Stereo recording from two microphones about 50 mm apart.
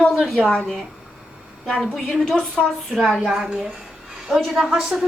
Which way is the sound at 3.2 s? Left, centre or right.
Centre.